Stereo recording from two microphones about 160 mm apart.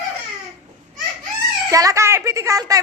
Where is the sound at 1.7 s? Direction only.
20° right (ahead or behind).